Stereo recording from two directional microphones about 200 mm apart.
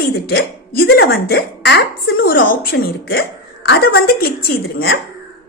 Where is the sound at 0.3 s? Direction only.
50° left (ahead or behind).